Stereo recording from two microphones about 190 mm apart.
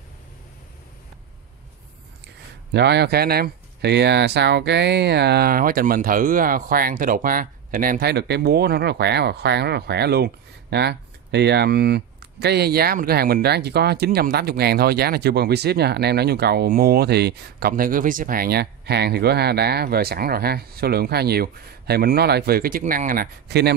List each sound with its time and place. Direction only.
2.2 s speech: 60° right (ahead or behind)